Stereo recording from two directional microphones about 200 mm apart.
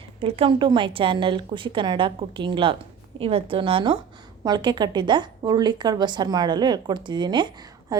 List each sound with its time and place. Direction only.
0.2 s a woman's voice: 30° right (ahead or behind)